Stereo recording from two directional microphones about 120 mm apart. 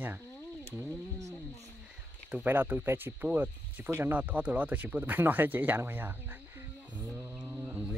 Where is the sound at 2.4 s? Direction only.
15° right (ahead or behind).